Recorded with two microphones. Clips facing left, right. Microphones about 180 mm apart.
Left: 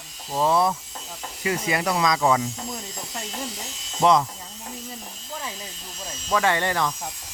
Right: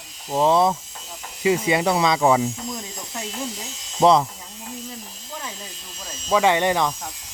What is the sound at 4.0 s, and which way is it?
Speech, 30° right (ahead or behind).